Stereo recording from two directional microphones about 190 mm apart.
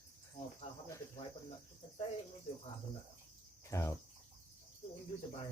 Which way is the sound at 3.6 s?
15° left (ahead or behind).